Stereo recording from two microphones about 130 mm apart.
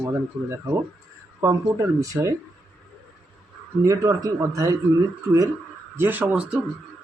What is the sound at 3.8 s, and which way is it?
Speech, 25° right (ahead or behind).